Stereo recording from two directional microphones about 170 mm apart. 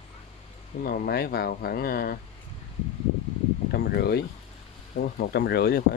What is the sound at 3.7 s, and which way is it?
Speech, 70° left (ahead or behind).